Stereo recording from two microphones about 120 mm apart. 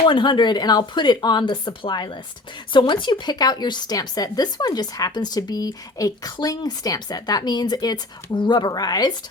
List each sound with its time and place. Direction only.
0.1 s speech: 40° left (ahead or behind)